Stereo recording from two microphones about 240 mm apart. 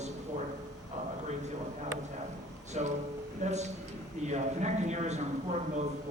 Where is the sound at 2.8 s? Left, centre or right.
Right.